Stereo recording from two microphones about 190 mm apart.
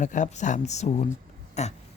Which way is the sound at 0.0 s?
40° left (ahead or behind).